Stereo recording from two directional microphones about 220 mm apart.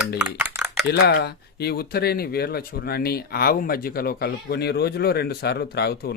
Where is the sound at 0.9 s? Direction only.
50° left (ahead or behind).